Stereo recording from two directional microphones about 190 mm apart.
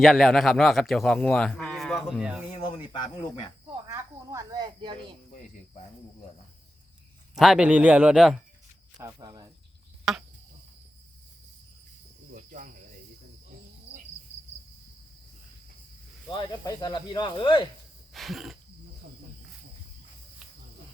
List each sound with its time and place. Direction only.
0.0 s a man's voice: centre (ahead or behind)
2.5 s speech: 25° left (ahead or behind)
3.8 s snake: 15° right (ahead or behind)
7.3 s a man's voice: centre (ahead or behind)
9.0 s a sound: 15° right (ahead or behind)
10.1 s a sound: centre (ahead or behind)
12.3 s cricket: 45° right (ahead or behind)
16.3 s speech: 20° left (ahead or behind)
18.1 s a sound: centre (ahead or behind)